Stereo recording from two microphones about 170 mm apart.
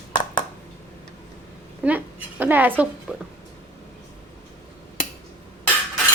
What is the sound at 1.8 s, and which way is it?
A woman's voice, 10° right (ahead or behind).